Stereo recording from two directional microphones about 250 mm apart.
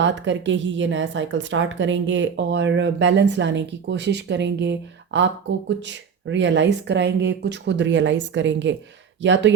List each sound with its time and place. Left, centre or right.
0.0 s a woman's voice: right